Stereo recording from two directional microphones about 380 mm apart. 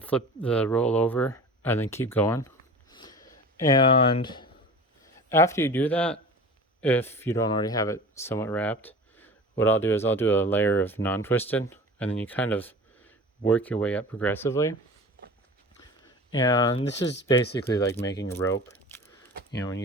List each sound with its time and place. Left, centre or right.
0.0 s speech: centre
2.9 s a sound: centre
5.3 s speech: centre
16.4 s speech: centre